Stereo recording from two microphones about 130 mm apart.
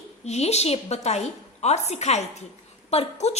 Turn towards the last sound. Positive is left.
turn(degrees=55)  # may be behind; listen again after turning